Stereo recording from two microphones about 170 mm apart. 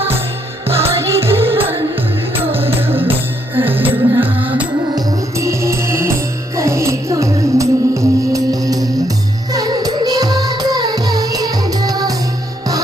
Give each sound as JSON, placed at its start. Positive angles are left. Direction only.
{"t": 0.9, "sound": "music", "side_deg": -15}